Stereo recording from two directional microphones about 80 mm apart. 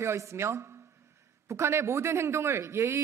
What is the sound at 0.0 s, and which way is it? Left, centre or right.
A man's voice, right.